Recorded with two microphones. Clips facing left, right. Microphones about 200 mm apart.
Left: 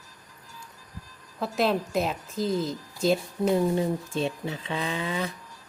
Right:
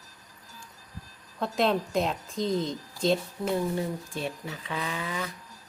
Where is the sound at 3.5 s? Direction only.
25° left (ahead or behind).